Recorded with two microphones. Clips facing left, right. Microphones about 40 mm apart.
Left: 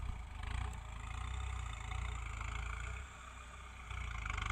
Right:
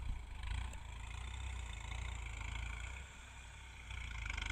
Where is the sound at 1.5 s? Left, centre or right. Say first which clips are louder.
Left 3 dB; left.